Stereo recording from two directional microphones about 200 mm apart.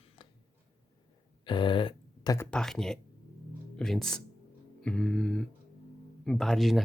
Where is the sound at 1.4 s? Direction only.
25° left (ahead or behind).